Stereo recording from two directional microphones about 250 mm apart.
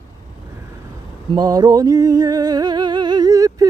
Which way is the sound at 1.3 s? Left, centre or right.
Centre.